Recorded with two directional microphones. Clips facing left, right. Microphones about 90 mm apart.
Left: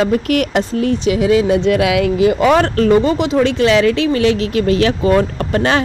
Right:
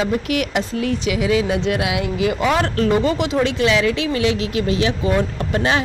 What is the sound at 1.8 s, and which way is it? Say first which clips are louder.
Speech: left 8 dB; 90° left.